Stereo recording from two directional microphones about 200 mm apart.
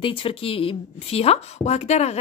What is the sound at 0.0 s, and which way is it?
A woman's voice, 25° left (ahead or behind).